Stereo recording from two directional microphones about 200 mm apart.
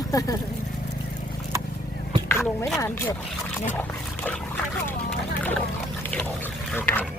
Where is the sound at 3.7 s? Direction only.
10° left (ahead or behind).